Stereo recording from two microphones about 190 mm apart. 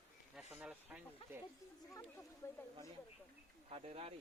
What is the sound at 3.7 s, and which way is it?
Speech, 30° right (ahead or behind).